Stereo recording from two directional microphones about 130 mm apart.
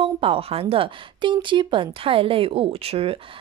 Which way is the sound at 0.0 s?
45° right (ahead or behind).